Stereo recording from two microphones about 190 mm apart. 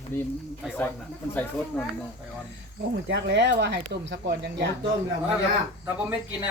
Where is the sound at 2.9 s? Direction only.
65° right (ahead or behind).